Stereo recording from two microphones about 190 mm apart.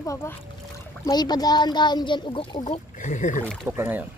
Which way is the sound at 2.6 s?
40° left (ahead or behind).